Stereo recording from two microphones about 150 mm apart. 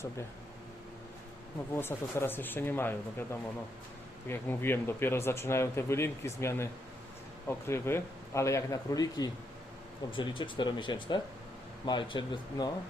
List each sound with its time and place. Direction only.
1.7 s speech: 15° left (ahead or behind)
4.3 s speech: 15° left (ahead or behind)